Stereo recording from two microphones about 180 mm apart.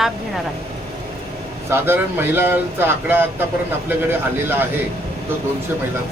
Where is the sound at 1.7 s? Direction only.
15° right (ahead or behind).